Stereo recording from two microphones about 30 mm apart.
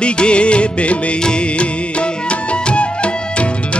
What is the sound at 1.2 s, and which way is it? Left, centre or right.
Music, left.